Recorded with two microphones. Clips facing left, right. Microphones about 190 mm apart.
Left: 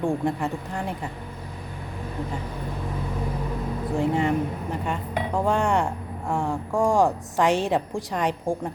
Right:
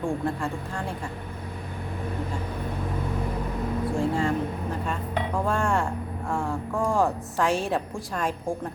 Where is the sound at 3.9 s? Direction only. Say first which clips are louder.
Left 4 dB; 20° left (ahead or behind).